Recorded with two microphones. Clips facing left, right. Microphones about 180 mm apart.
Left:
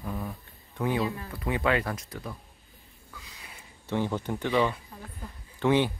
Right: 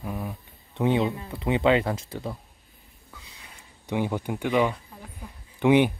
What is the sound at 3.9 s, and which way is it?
Speech, 10° right (ahead or behind).